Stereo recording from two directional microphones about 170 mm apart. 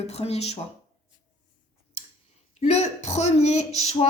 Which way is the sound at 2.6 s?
40° left (ahead or behind).